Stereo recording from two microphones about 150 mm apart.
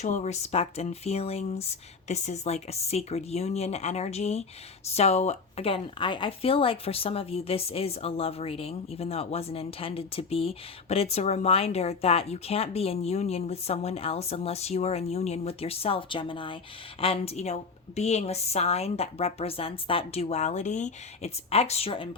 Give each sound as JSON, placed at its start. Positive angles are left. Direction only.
{"t": 0.0, "sound": "a woman's voice", "side_deg": 50}